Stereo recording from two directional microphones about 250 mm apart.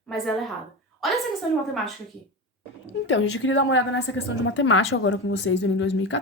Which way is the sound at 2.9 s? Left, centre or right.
Left.